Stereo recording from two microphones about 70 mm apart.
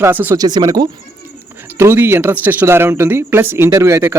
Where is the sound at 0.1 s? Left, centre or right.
Right.